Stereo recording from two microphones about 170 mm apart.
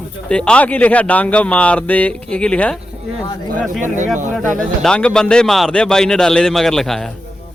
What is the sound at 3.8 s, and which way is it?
Speech, 45° right (ahead or behind).